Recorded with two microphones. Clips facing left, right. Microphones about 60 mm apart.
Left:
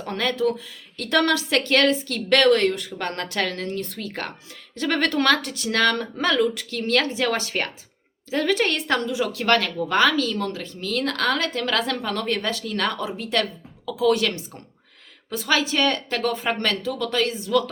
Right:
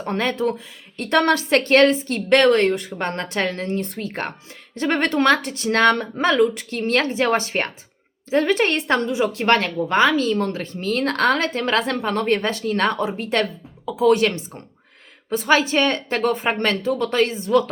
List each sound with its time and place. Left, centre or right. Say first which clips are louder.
0.0 s a woman's voice: right 1 dB; right